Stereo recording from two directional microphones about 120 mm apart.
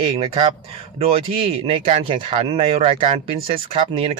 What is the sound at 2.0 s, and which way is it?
Speech, 50° right (ahead or behind).